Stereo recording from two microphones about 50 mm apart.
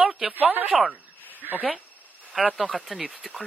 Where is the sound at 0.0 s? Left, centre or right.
Centre.